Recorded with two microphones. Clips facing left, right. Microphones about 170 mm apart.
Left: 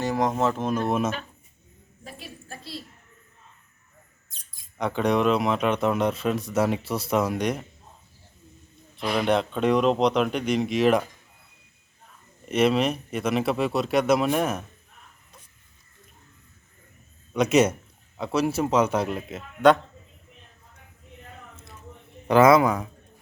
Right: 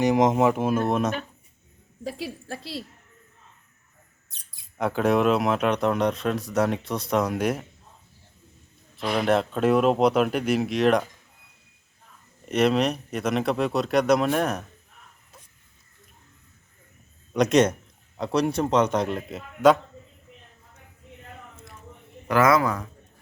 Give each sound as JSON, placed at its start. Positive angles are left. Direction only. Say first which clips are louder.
{"t": 0.0, "sound": "speech", "louder": "right 4 dB", "side_deg": -20}
{"t": 2.0, "sound": "a woman's voice", "louder": "right 9 dB", "side_deg": -85}
{"t": 4.3, "sound": "bird", "louder": "even", "side_deg": -65}
{"t": 4.8, "sound": "speech", "louder": "right 1 dB", "side_deg": -5}
{"t": 9.0, "sound": "speech", "louder": "right 1 dB", "side_deg": 0}
{"t": 12.5, "sound": "speech", "louder": "even", "side_deg": 0}
{"t": 17.3, "sound": "speech", "louder": "right 1 dB", "side_deg": 5}
{"t": 22.3, "sound": "a man's voice", "louder": "left 4 dB", "side_deg": 25}